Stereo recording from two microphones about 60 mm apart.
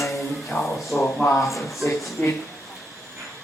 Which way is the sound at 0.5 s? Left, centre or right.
Left.